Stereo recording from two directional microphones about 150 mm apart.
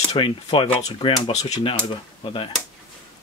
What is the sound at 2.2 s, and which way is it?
Speech, 35° left (ahead or behind).